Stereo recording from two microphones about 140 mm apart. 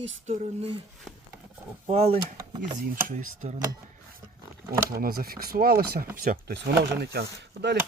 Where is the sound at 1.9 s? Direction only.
45° right (ahead or behind).